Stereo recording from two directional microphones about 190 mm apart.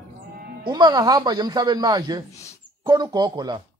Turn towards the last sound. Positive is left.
turn(degrees=-20)  # may be behind; listen again after turning